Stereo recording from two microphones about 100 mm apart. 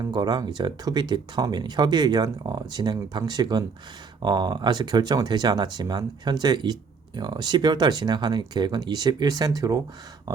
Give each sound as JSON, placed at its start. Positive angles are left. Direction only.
{"t": 0.0, "sound": "speech", "side_deg": -45}